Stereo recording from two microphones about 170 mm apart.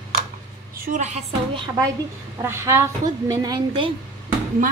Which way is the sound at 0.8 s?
45° right (ahead or behind).